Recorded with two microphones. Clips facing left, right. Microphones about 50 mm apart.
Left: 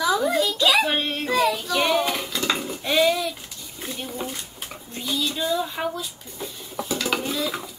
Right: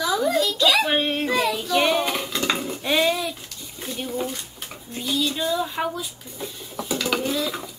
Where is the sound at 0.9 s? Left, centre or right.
Centre.